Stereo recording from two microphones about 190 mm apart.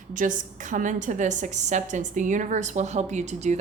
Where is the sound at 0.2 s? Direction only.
45° right (ahead or behind).